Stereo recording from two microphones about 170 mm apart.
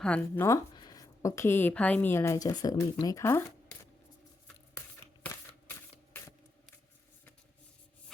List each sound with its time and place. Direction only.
0.0 s speech: 5° left (ahead or behind)